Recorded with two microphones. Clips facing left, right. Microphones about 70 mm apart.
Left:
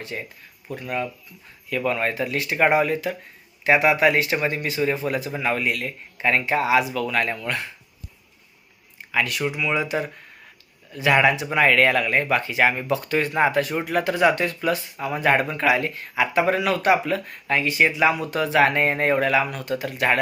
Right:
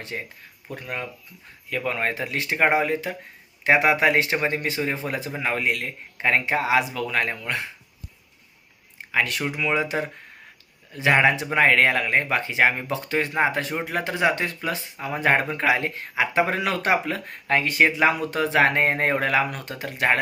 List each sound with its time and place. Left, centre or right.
0.0 s speech: right
9.1 s speech: right